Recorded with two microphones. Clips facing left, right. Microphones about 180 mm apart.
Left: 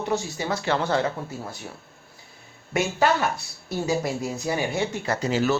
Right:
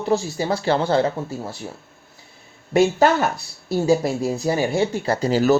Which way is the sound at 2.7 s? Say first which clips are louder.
Right 6 dB; 35° right (ahead or behind).